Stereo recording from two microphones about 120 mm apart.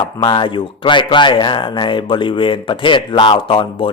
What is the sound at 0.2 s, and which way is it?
Speech, 40° left (ahead or behind).